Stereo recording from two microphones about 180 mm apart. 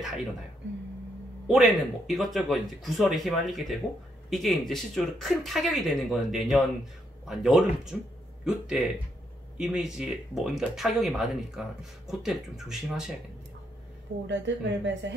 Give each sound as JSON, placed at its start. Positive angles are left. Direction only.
{"t": 1.5, "sound": "speech", "side_deg": 0}
{"t": 14.2, "sound": "speech", "side_deg": -90}